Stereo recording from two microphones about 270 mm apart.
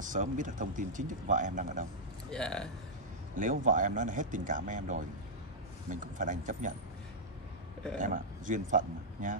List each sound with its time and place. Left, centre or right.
0.0 s speech: right
2.3 s a man's voice: centre
3.3 s speech: right
8.0 s speech: right